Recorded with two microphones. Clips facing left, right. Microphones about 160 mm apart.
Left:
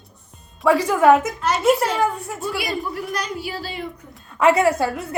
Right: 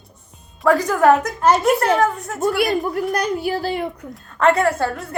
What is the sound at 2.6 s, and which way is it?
A woman's voice, 55° right (ahead or behind).